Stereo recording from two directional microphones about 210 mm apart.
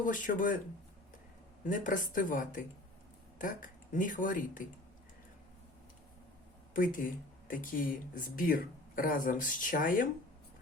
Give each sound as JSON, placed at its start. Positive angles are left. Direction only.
{"t": 0.0, "sound": "speech", "side_deg": 40}
{"t": 1.6, "sound": "speech", "side_deg": 40}
{"t": 6.7, "sound": "speech", "side_deg": 40}